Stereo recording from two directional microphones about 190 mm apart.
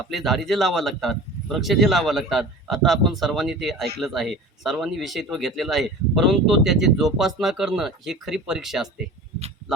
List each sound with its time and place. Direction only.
0.0 s speech: centre (ahead or behind)